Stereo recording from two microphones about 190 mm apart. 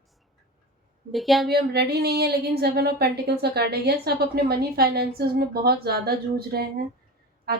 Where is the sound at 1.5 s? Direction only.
60° right (ahead or behind).